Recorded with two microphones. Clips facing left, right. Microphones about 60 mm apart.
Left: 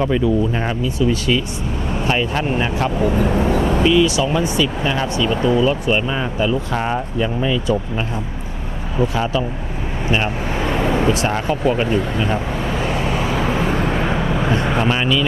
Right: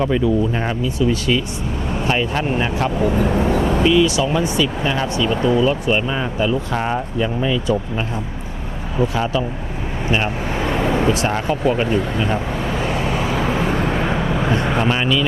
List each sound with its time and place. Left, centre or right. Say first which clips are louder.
0.0 s speech: even; left
1.9 s speech: even; left
10.1 s vehicle: even; left